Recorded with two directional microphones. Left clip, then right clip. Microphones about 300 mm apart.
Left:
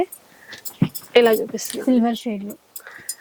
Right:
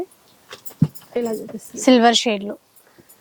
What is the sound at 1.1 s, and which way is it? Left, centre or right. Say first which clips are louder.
Speech: left 11 dB; centre.